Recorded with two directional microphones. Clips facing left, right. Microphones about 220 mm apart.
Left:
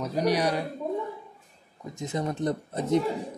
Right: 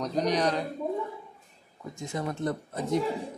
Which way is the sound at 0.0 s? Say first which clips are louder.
Left 1 dB; 10° left (ahead or behind).